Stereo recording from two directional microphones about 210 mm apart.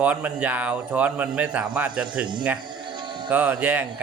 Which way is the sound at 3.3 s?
5° right (ahead or behind).